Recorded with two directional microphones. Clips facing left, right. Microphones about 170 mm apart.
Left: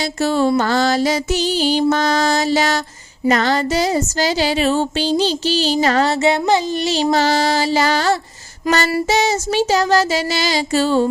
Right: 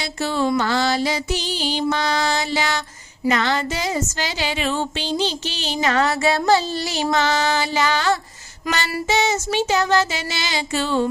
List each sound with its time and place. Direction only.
0.0 s music: 45° left (ahead or behind)